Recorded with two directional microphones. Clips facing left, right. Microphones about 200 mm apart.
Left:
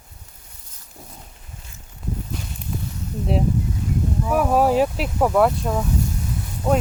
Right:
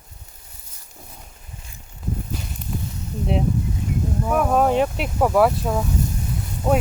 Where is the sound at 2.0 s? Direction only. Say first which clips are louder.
Right 1 dB; centre (ahead or behind).